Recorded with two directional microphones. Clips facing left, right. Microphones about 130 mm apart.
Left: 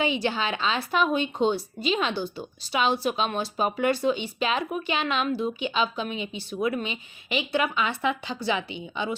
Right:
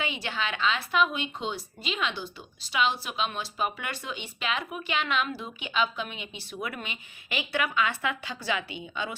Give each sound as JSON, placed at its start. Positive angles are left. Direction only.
{"t": 0.0, "sound": "speech", "side_deg": 30}